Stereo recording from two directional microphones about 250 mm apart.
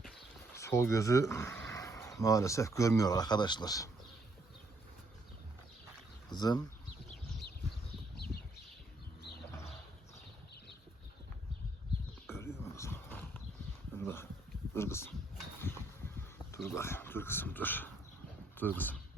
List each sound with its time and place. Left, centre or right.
0.5 s speech: centre
6.3 s speech: centre
8.1 s a sound: left
12.3 s a sound: centre
14.7 s speech: centre
16.6 s speech: centre